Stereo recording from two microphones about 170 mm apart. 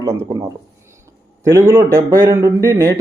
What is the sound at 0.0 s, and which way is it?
Speech, 20° right (ahead or behind).